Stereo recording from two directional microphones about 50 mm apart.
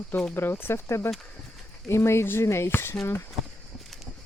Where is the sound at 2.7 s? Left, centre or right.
Left.